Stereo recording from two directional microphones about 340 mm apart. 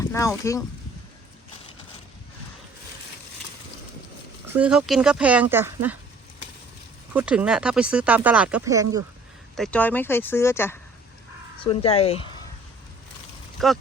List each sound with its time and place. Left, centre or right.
0.0 s speech: centre
4.5 s speech: centre
7.1 s speech: centre
9.6 s speech: centre
13.6 s speech: centre